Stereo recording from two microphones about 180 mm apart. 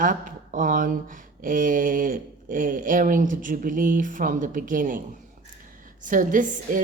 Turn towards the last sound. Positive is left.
turn(degrees=-45)  # may be behind; listen again after turning